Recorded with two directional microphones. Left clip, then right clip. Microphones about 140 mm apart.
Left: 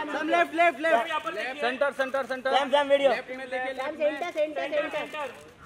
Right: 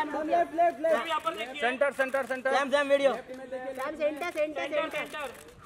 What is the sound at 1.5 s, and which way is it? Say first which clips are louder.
Speech: even; 15° right (ahead or behind).